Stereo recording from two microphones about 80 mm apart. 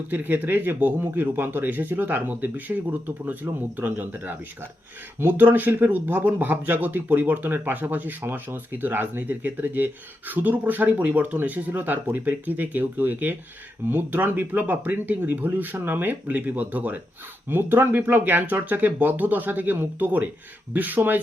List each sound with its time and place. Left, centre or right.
0.1 s speech: right